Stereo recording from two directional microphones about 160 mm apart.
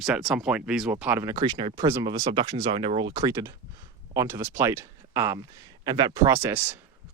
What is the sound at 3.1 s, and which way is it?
Speech, 25° right (ahead or behind).